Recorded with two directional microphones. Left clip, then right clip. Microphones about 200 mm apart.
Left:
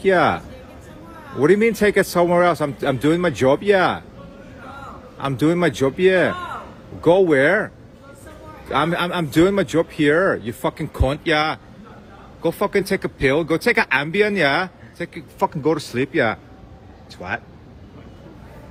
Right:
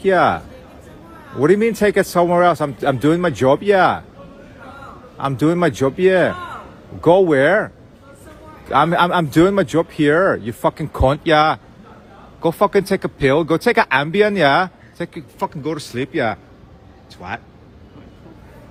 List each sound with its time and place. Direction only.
0.0 s speech: 15° right (ahead or behind)
5.1 s speech: 15° right (ahead or behind)
6.3 s a sound: centre (ahead or behind)
7.0 s speech: 15° right (ahead or behind)
8.7 s speech: 25° right (ahead or behind)
15.4 s speech: centre (ahead or behind)